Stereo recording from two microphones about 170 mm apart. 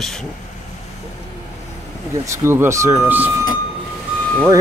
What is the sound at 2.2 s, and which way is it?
Speech, 15° right (ahead or behind).